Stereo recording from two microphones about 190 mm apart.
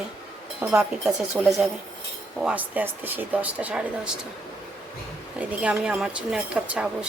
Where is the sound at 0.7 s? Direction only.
5° right (ahead or behind).